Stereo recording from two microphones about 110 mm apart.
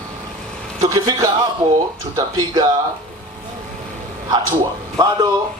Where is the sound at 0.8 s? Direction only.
30° right (ahead or behind).